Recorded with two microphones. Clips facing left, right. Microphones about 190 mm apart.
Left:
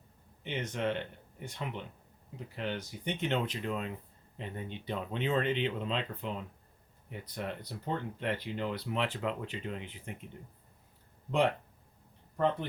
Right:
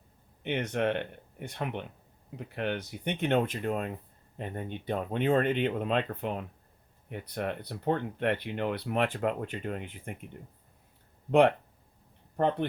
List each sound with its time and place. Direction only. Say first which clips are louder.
0.4 s speech: right 5 dB; 60° right (ahead or behind)